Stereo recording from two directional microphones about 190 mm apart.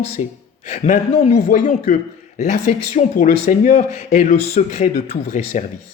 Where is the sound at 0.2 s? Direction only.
35° left (ahead or behind).